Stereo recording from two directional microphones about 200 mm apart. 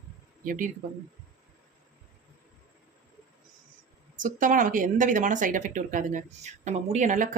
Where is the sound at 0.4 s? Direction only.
40° right (ahead or behind).